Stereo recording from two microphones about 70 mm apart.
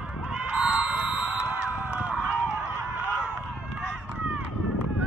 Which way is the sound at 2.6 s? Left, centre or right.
Right.